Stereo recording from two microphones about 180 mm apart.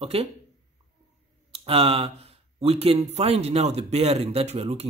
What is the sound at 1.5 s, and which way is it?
Speech, 30° right (ahead or behind).